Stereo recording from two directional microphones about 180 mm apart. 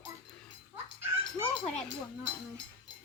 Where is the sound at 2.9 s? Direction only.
90° right.